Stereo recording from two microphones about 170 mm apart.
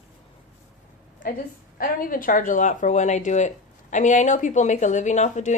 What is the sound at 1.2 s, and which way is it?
A woman's voice, 55° left (ahead or behind).